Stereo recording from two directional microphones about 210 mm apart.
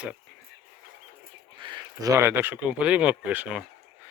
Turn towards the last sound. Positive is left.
turn(degrees=-5)  # may be behind; listen again after turning